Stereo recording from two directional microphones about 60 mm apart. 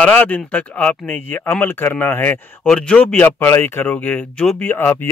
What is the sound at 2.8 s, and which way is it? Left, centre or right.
Speech, centre.